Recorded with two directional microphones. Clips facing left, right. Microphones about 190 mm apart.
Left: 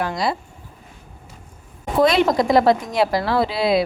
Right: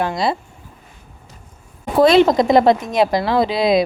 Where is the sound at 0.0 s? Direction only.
25° right (ahead or behind).